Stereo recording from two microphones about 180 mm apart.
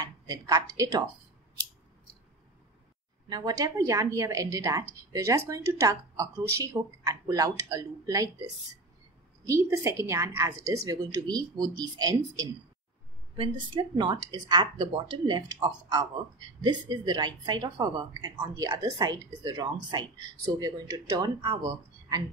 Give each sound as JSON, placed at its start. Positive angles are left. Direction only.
{"t": 0.0, "sound": "a woman's voice", "side_deg": -20}
{"t": 3.3, "sound": "a woman's voice", "side_deg": -20}
{"t": 9.5, "sound": "a woman's voice", "side_deg": -15}